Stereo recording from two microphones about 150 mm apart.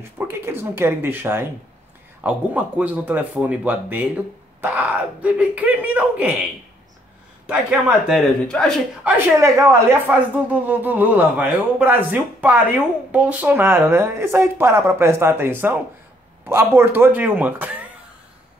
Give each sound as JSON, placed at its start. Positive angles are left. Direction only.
{"t": 0.2, "sound": "a woman's voice", "side_deg": -15}
{"t": 7.4, "sound": "a woman's voice", "side_deg": -5}
{"t": 9.0, "sound": "a woman's voice", "side_deg": -20}
{"t": 16.7, "sound": "a woman's voice", "side_deg": -15}